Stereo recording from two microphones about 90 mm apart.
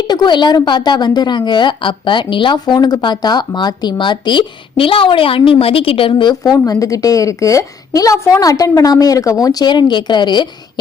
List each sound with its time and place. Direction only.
0.1 s a woman's voice: 55° left (ahead or behind)